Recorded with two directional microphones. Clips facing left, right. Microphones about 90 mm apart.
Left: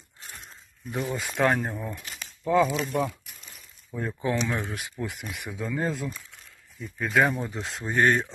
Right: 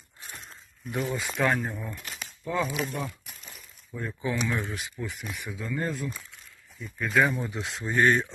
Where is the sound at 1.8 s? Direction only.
Centre (ahead or behind).